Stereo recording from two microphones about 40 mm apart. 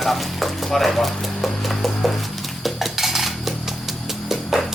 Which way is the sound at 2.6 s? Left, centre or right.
Centre.